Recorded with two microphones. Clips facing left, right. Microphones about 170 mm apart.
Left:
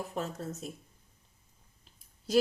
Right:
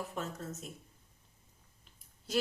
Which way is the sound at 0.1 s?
35° left (ahead or behind).